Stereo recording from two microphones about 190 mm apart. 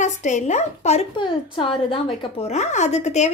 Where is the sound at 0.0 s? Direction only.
40° left (ahead or behind).